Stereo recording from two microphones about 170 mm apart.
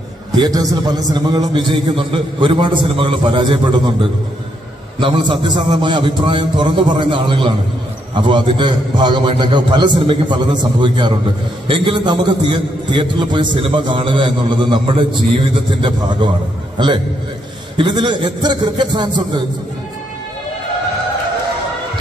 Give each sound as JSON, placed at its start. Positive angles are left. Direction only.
{"t": 0.4, "sound": "a man's voice", "side_deg": -20}
{"t": 5.0, "sound": "a man's voice", "side_deg": -30}